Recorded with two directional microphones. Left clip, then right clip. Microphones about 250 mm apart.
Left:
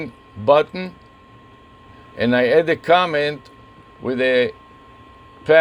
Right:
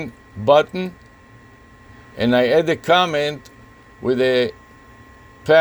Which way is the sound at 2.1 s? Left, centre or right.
Right.